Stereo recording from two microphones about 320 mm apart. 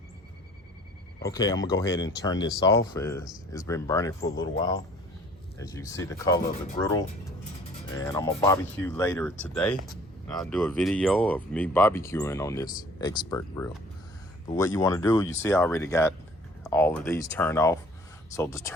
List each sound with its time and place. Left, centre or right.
1.2 s speech: centre
1.5 s speech: left
2.6 s speech: centre
8.0 s speech: centre